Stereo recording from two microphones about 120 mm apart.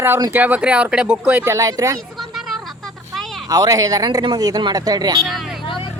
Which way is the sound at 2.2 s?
Centre (ahead or behind).